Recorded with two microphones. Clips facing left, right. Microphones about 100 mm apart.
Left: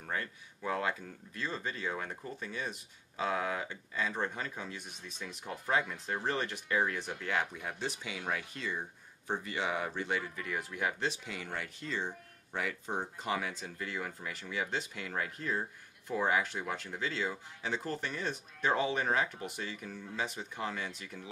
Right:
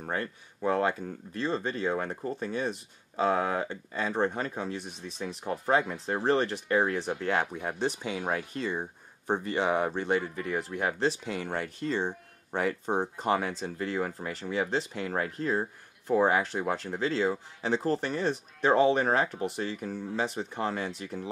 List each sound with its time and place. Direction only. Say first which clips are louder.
0.0 s speech: right 5 dB; 40° right (ahead or behind)